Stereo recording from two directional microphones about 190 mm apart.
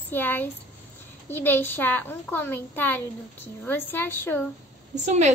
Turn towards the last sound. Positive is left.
turn(degrees=-35)  # may be behind; listen again after turning